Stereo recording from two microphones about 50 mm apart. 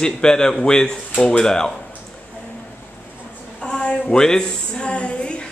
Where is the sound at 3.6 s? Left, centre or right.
Centre.